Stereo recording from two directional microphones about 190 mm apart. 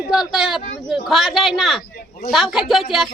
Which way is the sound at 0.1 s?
Centre (ahead or behind).